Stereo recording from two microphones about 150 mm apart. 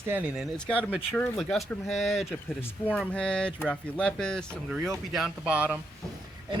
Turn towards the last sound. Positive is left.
turn(degrees=-10)  # may be behind; listen again after turning